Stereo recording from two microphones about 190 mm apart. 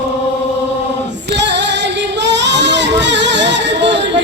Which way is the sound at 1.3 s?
65° right (ahead or behind).